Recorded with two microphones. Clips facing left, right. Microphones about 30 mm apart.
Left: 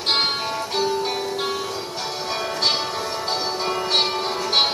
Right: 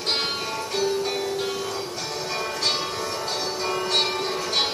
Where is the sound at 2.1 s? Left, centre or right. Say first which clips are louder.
Left 2 dB; left.